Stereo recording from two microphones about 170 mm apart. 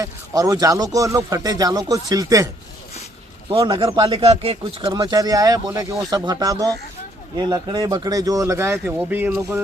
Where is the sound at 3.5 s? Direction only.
25° right (ahead or behind).